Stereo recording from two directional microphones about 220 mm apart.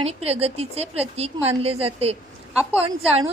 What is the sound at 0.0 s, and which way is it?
A woman's voice, 25° right (ahead or behind).